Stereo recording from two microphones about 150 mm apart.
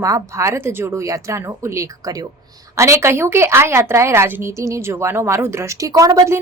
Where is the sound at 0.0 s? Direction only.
20° right (ahead or behind).